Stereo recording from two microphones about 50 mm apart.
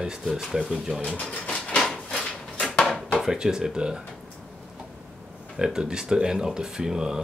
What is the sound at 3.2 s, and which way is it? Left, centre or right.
Speech, centre.